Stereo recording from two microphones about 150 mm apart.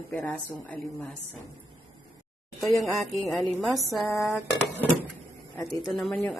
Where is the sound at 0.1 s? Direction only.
10° left (ahead or behind).